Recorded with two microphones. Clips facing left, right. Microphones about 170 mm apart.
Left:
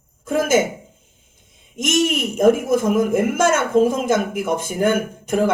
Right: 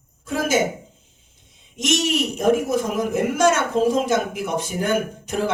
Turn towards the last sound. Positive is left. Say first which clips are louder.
# left 3 dB
turn(degrees=50)  # may be behind; listen again after turning